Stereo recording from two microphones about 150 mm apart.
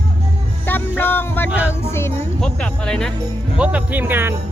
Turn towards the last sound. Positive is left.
turn(degrees=-15)  # may be behind; listen again after turning